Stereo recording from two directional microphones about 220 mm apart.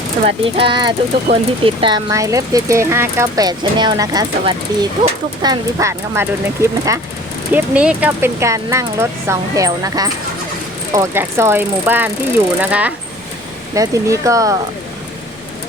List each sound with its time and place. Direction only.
0.3 s speech: 25° right (ahead or behind)